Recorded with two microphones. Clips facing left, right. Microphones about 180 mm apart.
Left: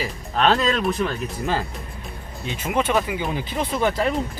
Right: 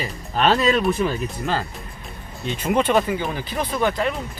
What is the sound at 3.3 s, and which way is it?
Speech, 20° left (ahead or behind).